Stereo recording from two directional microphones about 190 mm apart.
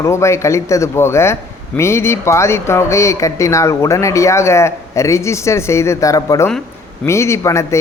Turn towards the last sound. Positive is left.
turn(degrees=15)  # may be behind; listen again after turning